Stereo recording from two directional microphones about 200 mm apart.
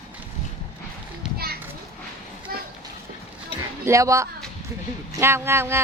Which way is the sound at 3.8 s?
15° right (ahead or behind).